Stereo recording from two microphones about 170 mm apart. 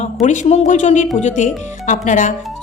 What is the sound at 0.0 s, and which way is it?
A woman's voice, 45° left (ahead or behind).